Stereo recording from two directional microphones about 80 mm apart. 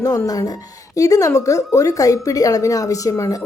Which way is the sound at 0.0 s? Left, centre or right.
Left.